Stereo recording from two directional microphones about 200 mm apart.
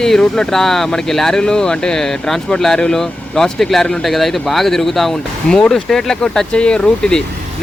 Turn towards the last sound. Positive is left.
turn(degrees=5)  # may be behind; listen again after turning